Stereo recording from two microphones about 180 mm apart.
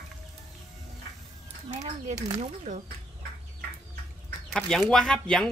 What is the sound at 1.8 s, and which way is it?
Speech, 35° right (ahead or behind).